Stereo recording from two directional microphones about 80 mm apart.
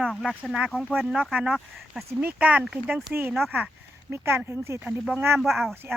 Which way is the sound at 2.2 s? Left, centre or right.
Centre.